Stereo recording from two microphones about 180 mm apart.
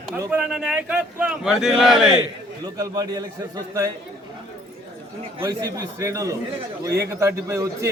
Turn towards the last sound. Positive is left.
turn(degrees=-15)  # may be behind; listen again after turning